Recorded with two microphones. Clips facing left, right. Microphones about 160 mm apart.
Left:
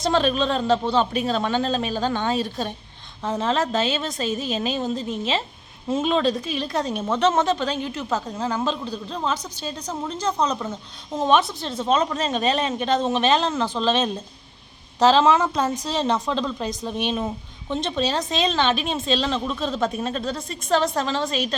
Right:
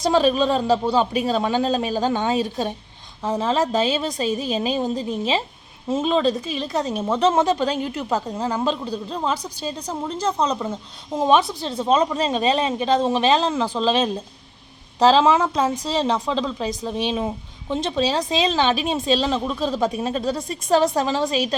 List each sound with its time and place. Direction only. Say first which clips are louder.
0.0 s speech: right 3 dB; 10° right (ahead or behind)
6.0 s speech: right 2 dB; centre (ahead or behind)
7.6 s speech: right 3 dB; 40° right (ahead or behind)
8.4 s speech: right 1 dB; 15° right (ahead or behind)
8.6 s speech: right 3 dB; centre (ahead or behind)
10.1 s speech: right 2 dB; 30° right (ahead or behind)
10.6 s speech: right 3 dB; 10° right (ahead or behind)
12.3 s speech: right 2 dB; centre (ahead or behind)